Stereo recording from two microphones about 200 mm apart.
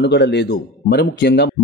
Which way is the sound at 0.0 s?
60° left (ahead or behind).